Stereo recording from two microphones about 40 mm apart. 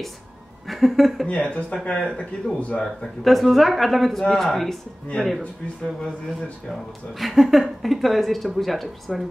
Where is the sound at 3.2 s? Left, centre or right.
Centre.